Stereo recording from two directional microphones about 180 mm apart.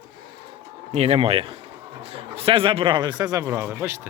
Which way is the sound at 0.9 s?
35° right (ahead or behind).